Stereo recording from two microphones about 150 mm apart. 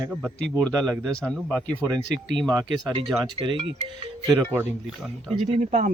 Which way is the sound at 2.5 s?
30° right (ahead or behind).